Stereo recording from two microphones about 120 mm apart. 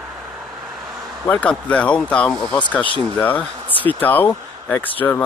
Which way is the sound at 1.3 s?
10° left (ahead or behind).